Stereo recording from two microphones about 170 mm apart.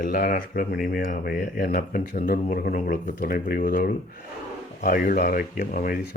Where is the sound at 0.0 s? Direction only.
55° left (ahead or behind).